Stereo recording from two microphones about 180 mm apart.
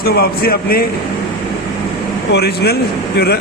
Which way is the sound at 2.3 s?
65° left (ahead or behind).